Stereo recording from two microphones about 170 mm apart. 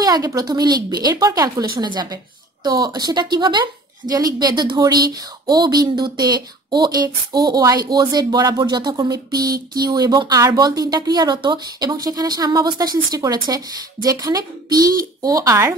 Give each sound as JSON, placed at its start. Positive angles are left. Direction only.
{"t": 0.0, "sound": "speech", "side_deg": -20}